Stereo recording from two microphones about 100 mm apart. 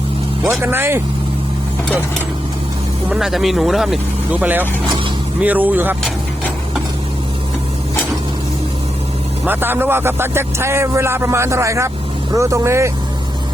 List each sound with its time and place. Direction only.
0.6 s speech: 25° right (ahead or behind)
3.1 s speech: 5° right (ahead or behind)
4.3 s speech: 15° right (ahead or behind)
9.5 s speech: 20° right (ahead or behind)